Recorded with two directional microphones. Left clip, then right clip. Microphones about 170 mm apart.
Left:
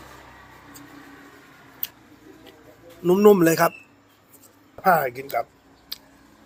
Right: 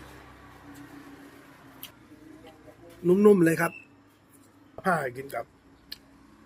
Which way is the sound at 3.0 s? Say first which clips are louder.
Left 4 dB; 15° right (ahead or behind).